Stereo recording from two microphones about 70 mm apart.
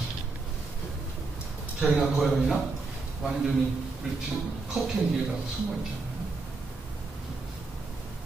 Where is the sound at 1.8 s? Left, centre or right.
Centre.